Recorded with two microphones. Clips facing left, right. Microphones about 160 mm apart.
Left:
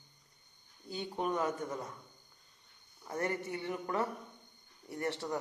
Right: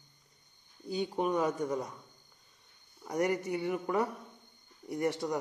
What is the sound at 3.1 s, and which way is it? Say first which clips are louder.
Speech: right 5 dB; 15° right (ahead or behind).